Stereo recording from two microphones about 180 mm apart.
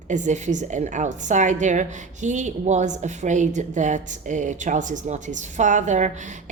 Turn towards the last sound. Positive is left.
turn(degrees=-45)  # may be behind; listen again after turning